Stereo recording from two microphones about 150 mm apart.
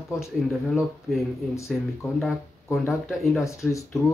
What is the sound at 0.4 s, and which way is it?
Speech, centre (ahead or behind).